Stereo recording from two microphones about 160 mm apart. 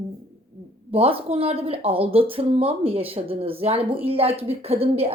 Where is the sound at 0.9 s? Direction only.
35° right (ahead or behind).